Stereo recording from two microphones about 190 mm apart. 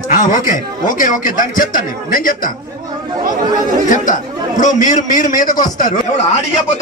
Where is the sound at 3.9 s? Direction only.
40° left (ahead or behind).